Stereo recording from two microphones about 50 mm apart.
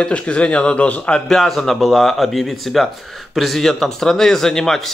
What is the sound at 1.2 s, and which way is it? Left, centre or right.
Speech, centre.